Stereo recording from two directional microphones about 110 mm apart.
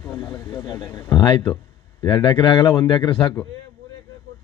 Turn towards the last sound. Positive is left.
turn(degrees=50)  # may be behind; listen again after turning